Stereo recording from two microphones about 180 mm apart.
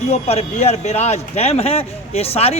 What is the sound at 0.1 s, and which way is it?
Speech, 35° left (ahead or behind).